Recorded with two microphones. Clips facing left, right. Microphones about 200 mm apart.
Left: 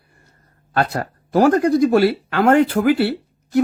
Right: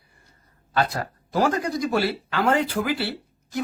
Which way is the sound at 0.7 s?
60° left (ahead or behind).